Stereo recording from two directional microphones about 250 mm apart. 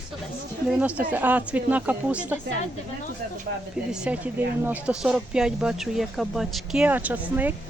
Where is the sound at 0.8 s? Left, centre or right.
Centre.